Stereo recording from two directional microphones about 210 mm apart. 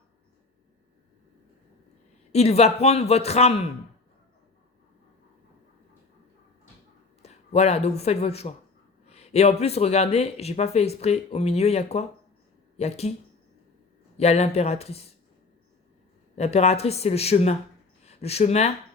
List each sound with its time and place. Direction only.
2.3 s speech: 30° left (ahead or behind)
7.2 s speech: 30° left (ahead or behind)
14.2 s speech: 30° left (ahead or behind)
16.3 s speech: 30° left (ahead or behind)